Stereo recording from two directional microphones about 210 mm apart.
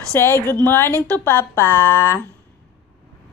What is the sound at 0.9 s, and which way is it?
Speech, 15° right (ahead or behind).